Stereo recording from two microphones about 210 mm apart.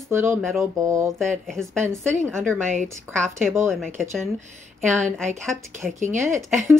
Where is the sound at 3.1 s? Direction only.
10° right (ahead or behind).